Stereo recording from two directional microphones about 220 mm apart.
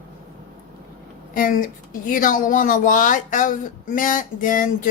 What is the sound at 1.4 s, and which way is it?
Speech, 40° left (ahead or behind).